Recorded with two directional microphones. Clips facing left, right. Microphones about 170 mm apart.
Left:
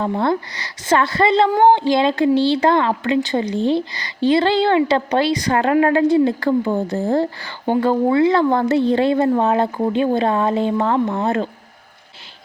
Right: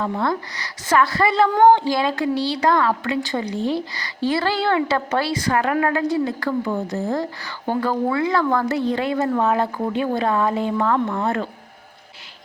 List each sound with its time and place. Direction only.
0.0 s a woman's voice: 30° left (ahead or behind)